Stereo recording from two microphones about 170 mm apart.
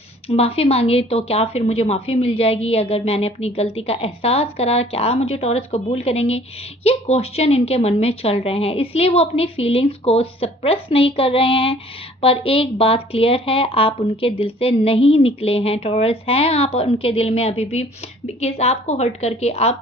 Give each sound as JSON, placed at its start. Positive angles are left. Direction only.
{"t": 0.3, "sound": "speech", "side_deg": 35}